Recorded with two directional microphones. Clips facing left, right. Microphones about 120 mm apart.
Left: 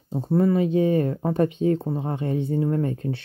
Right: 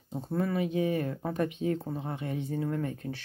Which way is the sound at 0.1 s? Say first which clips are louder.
Left 10 dB; 30° left (ahead or behind).